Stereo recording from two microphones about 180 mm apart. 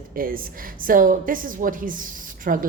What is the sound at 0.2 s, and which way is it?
A woman's voice, 50° right (ahead or behind).